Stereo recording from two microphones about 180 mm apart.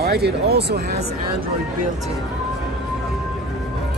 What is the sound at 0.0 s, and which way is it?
Speech, 60° right (ahead or behind).